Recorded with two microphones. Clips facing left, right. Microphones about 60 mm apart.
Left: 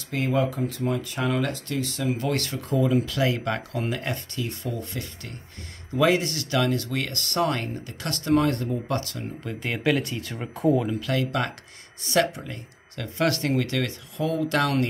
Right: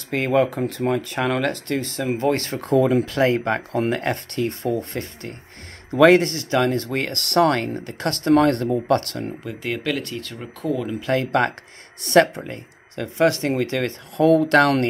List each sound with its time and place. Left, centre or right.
0.1 s speech: right
1.9 s speech: right
2.6 s speech: right
3.1 s speech: right
5.9 s speech: right
6.2 s speech: right
7.7 s speech: right
9.4 s speech: centre
10.5 s speech: centre
11.0 s speech: right
12.0 s speech: right
12.4 s speech: right
14.1 s speech: right